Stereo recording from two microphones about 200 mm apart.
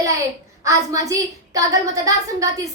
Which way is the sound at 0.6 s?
15° right (ahead or behind).